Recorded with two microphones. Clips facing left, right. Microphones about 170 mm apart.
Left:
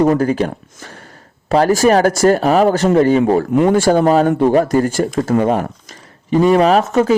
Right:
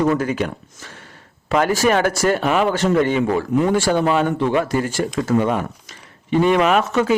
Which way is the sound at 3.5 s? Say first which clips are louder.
Left 4 dB; 55° left (ahead or behind).